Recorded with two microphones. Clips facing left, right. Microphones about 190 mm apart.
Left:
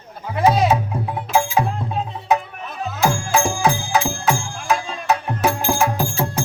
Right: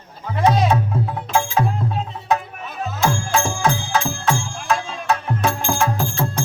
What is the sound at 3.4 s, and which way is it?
Music, 15° left (ahead or behind).